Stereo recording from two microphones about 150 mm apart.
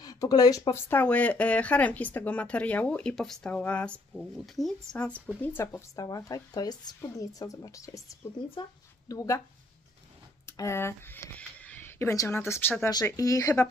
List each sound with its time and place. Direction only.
0.0 s speech: 25° left (ahead or behind)
10.4 s speech: 20° left (ahead or behind)